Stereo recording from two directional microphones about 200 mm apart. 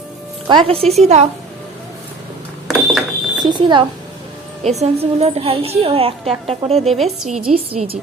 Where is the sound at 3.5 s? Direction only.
25° right (ahead or behind).